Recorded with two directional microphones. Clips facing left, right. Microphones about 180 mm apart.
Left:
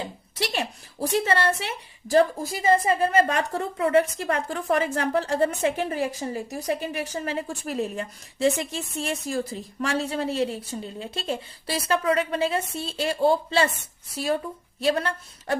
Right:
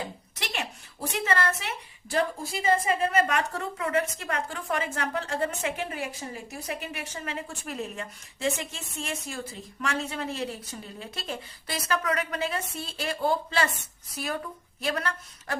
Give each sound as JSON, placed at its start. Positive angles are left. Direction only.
{"t": 0.0, "sound": "a woman's voice", "side_deg": 30}
{"t": 14.8, "sound": "a woman's voice", "side_deg": 30}